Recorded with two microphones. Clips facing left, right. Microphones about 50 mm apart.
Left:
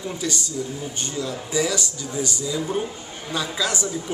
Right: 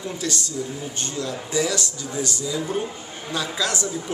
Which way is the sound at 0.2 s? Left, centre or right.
Centre.